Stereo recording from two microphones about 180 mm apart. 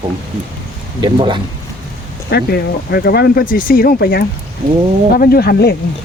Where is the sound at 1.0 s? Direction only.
25° right (ahead or behind).